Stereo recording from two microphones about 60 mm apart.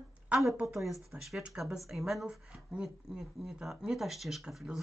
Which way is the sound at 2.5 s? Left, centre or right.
Centre.